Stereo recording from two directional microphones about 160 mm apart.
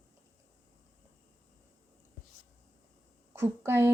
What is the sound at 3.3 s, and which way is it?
Speech, 15° right (ahead or behind).